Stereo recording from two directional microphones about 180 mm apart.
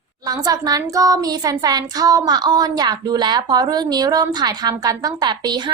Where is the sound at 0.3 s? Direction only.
20° right (ahead or behind).